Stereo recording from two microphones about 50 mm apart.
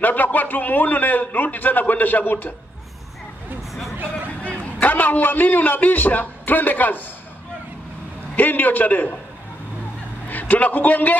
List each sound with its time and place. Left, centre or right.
0.0 s a man's voice: left
4.4 s a man's voice: left
8.4 s a man's voice: left
10.2 s a man's voice: left